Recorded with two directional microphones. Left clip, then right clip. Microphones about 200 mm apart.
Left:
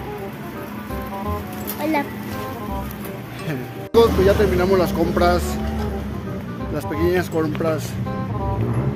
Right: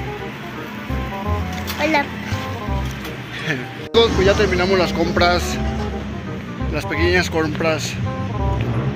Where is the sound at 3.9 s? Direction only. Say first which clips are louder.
Even; 15° left (ahead or behind).